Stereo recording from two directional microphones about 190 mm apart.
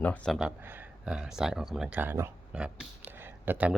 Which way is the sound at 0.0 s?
5° left (ahead or behind).